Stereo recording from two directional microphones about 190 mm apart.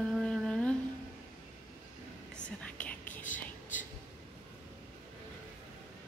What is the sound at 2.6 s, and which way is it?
Whispering, 10° left (ahead or behind).